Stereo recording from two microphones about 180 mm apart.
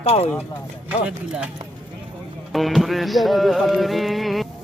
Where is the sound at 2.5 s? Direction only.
Centre (ahead or behind).